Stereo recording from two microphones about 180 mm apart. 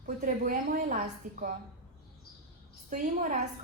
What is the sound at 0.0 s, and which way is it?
A woman's voice, 50° right (ahead or behind).